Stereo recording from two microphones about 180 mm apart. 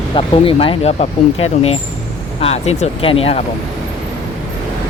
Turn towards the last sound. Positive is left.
turn(degrees=30)  # may be behind; listen again after turning